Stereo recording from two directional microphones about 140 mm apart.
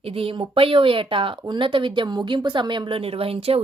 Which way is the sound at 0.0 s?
40° right (ahead or behind).